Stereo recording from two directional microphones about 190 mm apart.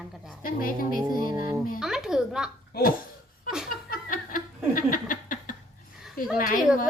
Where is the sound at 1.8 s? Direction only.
Centre (ahead or behind).